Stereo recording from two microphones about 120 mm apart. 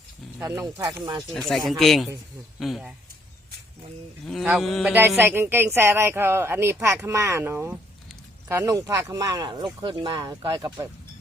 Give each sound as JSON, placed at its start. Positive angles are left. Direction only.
{"t": 0.4, "sound": "speech", "side_deg": -30}
{"t": 1.3, "sound": "speech", "side_deg": 0}
{"t": 4.3, "sound": "speech", "side_deg": 0}
{"t": 4.9, "sound": "speech", "side_deg": -15}